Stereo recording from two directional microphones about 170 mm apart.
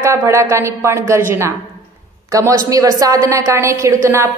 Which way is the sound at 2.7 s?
20° right (ahead or behind).